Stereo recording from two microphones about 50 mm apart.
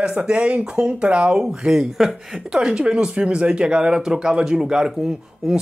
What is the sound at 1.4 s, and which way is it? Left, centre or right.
Speech, centre.